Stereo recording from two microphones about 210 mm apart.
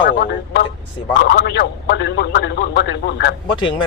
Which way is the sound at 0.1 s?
50° left (ahead or behind).